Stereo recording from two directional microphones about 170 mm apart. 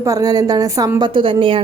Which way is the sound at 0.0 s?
20° right (ahead or behind).